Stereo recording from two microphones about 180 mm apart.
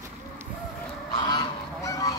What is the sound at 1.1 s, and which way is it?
Goose, 25° left (ahead or behind).